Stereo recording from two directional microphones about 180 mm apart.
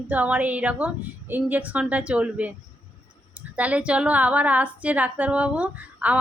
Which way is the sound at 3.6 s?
5° right (ahead or behind).